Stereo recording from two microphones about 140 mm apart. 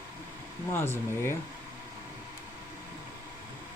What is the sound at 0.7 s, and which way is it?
Speech, 15° left (ahead or behind).